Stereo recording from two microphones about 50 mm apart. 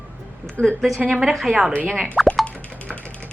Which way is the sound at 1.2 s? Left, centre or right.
Centre.